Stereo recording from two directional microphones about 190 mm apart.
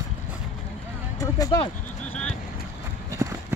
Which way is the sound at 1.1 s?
20° left (ahead or behind).